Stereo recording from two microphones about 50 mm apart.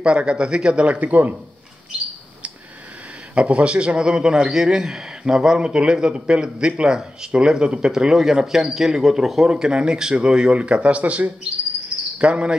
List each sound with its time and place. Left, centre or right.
0.0 s a man's voice: centre
3.3 s a man's voice: right; by 9.5 s centre
9.5 s a man's voice: centre